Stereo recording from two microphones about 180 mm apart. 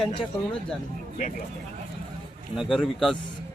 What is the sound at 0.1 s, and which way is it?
Speech, 30° left (ahead or behind).